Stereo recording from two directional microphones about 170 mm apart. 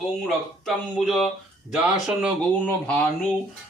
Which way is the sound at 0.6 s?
Centre (ahead or behind).